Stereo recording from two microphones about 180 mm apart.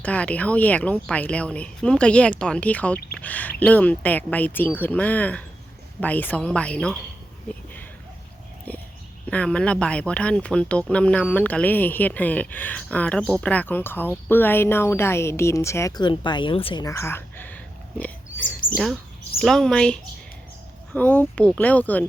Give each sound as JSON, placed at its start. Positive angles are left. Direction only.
{"t": 0.0, "sound": "speech", "side_deg": 5}
{"t": 7.4, "sound": "a sound", "side_deg": 10}
{"t": 9.3, "sound": "speech", "side_deg": 5}
{"t": 16.8, "sound": "a sound", "side_deg": 15}
{"t": 18.3, "sound": "chirp", "side_deg": 50}
{"t": 19.4, "sound": "a woman's voice", "side_deg": 0}